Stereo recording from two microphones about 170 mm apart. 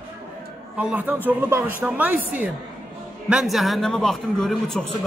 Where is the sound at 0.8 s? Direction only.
10° right (ahead or behind).